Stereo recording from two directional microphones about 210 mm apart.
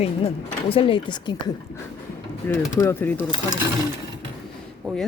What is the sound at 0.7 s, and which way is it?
Speech, 25° left (ahead or behind).